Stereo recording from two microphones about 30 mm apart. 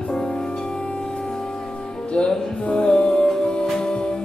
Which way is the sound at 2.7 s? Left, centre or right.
Left.